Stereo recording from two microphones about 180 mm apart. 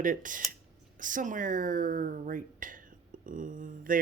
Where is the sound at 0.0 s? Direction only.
45° right (ahead or behind).